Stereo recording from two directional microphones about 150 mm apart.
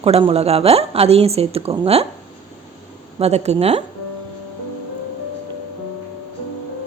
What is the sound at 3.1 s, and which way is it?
Speech, 45° right (ahead or behind).